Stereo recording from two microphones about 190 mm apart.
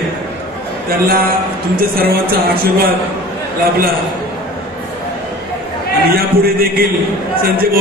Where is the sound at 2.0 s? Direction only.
55° right (ahead or behind).